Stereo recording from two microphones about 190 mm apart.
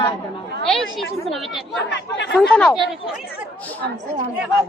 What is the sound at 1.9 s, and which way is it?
Speech, 65° left (ahead or behind).